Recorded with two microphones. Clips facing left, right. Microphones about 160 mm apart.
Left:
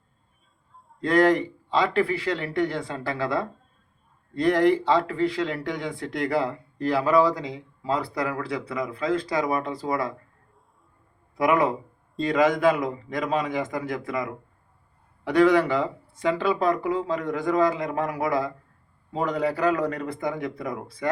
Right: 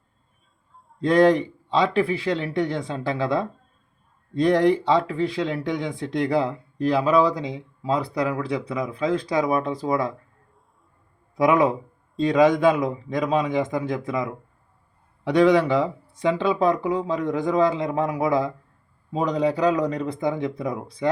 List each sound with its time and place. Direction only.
1.0 s speech: 20° right (ahead or behind)
11.3 s speech: 15° right (ahead or behind)